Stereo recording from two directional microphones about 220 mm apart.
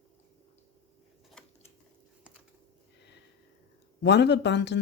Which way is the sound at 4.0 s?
50° left (ahead or behind).